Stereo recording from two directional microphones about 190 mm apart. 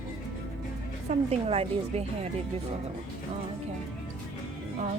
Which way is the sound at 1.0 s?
35° right (ahead or behind).